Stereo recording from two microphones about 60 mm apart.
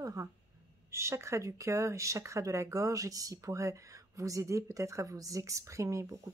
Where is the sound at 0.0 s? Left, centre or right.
Right.